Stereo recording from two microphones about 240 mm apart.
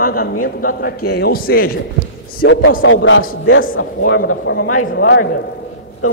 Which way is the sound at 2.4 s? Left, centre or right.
Left.